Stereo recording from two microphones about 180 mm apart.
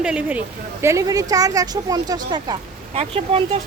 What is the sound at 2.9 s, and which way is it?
Speech, 35° right (ahead or behind).